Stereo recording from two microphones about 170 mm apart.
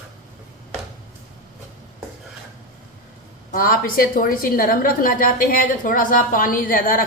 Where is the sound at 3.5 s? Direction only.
60° left (ahead or behind).